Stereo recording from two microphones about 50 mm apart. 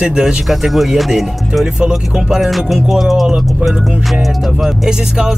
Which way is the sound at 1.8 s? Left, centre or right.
Centre.